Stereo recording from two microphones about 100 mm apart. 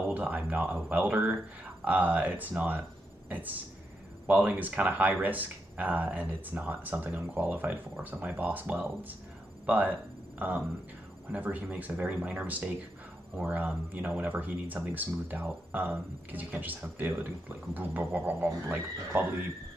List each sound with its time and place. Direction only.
0.1 s speech: 15° right (ahead or behind)
11.3 s speech: 15° right (ahead or behind)